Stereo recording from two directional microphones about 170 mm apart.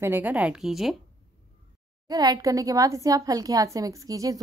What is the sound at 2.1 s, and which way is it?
A woman's voice, 20° right (ahead or behind).